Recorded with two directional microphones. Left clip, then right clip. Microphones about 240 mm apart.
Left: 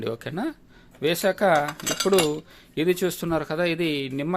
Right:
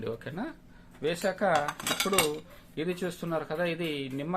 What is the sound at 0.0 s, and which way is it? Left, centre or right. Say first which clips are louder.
Speech: left 7 dB; left.